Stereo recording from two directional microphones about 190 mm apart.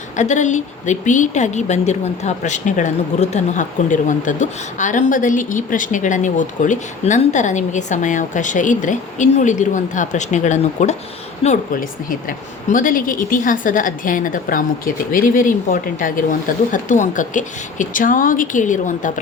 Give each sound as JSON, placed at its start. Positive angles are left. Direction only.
{"t": 0.2, "sound": "a woman's voice", "side_deg": 40}